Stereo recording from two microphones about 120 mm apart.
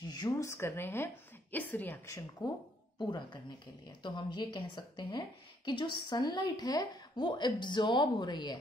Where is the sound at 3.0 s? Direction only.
40° left (ahead or behind).